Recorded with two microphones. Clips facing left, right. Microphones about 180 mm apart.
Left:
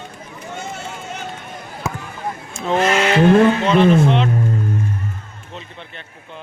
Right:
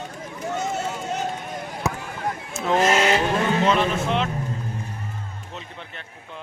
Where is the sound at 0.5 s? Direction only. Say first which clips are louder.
Right 3 dB; 40° right (ahead or behind).